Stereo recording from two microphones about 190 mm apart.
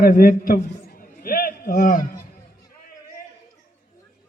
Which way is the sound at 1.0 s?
50° left (ahead or behind).